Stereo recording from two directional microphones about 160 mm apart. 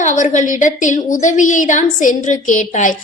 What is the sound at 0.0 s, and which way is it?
A woman's voice, 50° left (ahead or behind).